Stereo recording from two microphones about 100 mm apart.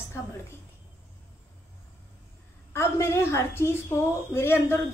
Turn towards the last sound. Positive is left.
turn(degrees=25)  # may be behind; listen again after turning